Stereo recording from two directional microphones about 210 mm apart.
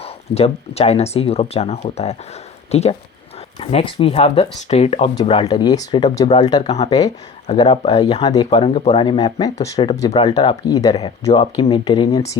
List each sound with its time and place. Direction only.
0.0 s speech: 30° left (ahead or behind)
7.4 s speech: 30° left (ahead or behind)